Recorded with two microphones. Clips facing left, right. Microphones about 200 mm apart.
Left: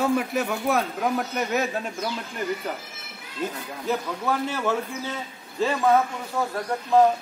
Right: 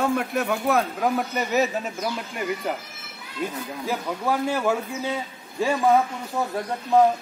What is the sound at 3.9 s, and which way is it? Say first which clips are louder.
A man's voice: even; 10° right (ahead or behind).